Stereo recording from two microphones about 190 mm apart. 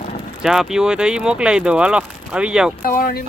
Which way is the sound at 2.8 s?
50° left (ahead or behind).